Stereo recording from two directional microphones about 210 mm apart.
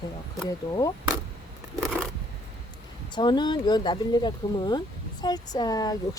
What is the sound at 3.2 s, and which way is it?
Speech, 20° left (ahead or behind).